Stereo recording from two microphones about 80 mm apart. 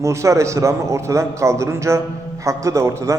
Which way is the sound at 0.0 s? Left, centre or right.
Right.